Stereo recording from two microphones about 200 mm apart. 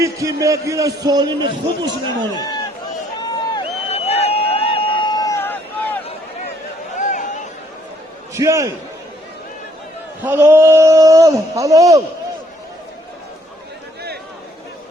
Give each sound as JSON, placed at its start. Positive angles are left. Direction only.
{"t": 0.0, "sound": "a man's voice", "side_deg": -15}
{"t": 2.3, "sound": "a man's voice", "side_deg": 20}
{"t": 3.2, "sound": "a sound", "side_deg": 20}
{"t": 6.9, "sound": "a sound", "side_deg": 35}
{"t": 8.3, "sound": "a man's voice", "side_deg": -15}
{"t": 10.2, "sound": "a man's voice", "side_deg": -10}